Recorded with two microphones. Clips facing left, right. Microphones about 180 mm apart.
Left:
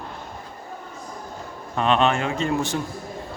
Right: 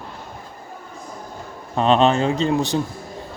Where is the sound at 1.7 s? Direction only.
35° right (ahead or behind).